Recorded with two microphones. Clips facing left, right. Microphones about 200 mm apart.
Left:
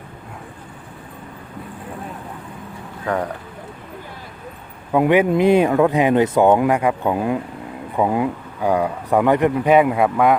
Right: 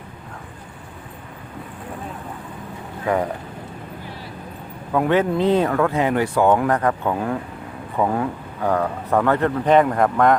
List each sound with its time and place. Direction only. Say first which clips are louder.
3.1 s speech: right 2 dB; 10° right (ahead or behind)
4.9 s speech: left 3 dB; 15° left (ahead or behind)